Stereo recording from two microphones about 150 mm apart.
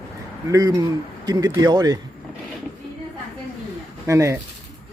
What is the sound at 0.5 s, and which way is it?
Speech, 25° right (ahead or behind).